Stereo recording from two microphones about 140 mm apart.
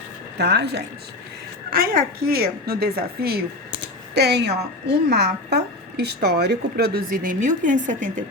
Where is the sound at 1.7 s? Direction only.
90° right.